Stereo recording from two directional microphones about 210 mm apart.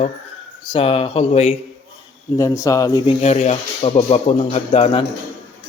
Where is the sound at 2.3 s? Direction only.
15° left (ahead or behind).